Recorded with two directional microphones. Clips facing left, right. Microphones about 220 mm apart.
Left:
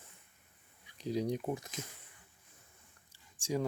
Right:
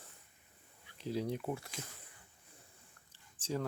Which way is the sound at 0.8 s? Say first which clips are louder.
Left 3 dB; 15° left (ahead or behind).